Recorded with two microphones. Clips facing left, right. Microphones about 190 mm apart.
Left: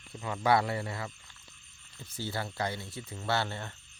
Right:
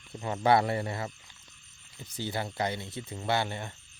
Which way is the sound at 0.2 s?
25° right (ahead or behind).